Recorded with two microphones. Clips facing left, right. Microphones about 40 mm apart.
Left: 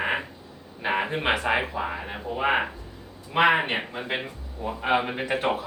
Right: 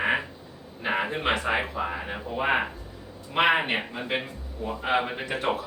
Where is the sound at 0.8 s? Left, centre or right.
Centre.